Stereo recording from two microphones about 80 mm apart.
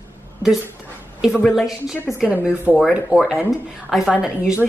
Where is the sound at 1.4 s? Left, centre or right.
Centre.